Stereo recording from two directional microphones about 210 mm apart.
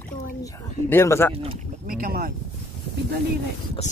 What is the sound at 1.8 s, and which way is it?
Speech, 45° right (ahead or behind).